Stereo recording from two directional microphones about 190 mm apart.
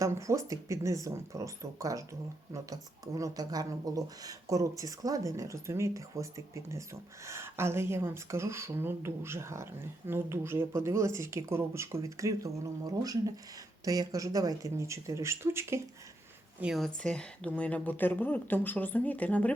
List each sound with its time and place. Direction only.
0.0 s speech: 15° right (ahead or behind)
3.2 s speech: 20° right (ahead or behind)
16.6 s speech: centre (ahead or behind)